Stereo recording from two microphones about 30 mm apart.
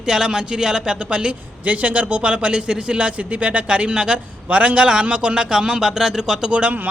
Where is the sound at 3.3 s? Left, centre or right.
Right.